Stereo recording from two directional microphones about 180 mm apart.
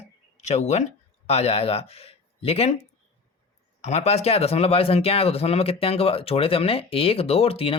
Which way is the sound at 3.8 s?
35° left (ahead or behind).